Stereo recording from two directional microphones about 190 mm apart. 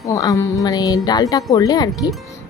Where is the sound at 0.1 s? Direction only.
15° left (ahead or behind).